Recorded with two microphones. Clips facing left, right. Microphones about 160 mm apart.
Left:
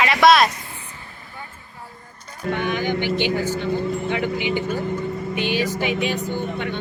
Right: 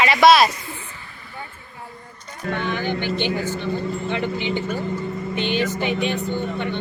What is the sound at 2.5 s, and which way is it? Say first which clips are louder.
Speech: left 2 dB; 15° left (ahead or behind).